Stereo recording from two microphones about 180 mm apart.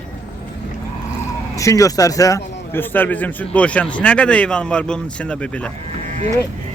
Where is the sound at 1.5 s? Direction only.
20° left (ahead or behind).